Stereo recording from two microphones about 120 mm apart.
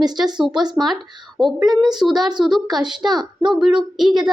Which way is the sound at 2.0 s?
Centre (ahead or behind).